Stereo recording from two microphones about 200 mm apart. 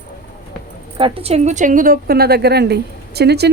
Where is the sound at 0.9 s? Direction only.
30° right (ahead or behind).